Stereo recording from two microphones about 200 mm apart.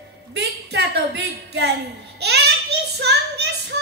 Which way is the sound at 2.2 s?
55° right (ahead or behind).